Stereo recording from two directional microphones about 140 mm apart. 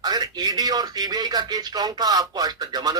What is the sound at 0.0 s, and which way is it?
Speech, 30° right (ahead or behind).